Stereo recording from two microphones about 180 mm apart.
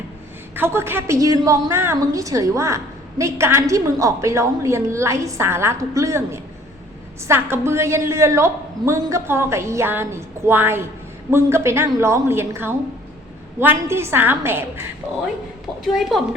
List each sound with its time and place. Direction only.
0.5 s a woman's voice: 10° right (ahead or behind)
15.8 s a woman's voice: centre (ahead or behind)